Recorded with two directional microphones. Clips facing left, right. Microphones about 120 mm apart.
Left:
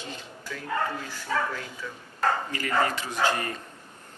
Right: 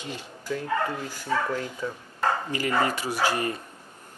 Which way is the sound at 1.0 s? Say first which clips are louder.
Right 2 dB; 40° right (ahead or behind).